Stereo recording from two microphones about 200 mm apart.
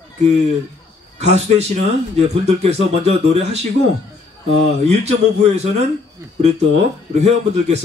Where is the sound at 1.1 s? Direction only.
35° right (ahead or behind).